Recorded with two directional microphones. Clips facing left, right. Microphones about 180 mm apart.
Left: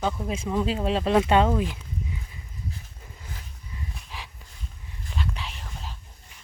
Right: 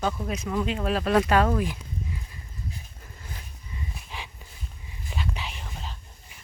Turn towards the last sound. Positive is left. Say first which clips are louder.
# right 1 dB
turn(degrees=-5)  # may be behind; listen again after turning